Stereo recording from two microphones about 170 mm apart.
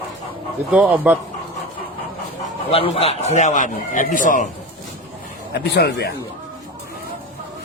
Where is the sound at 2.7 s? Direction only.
35° left (ahead or behind).